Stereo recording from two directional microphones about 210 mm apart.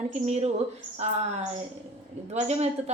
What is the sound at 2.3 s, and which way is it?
Speech, 30° right (ahead or behind).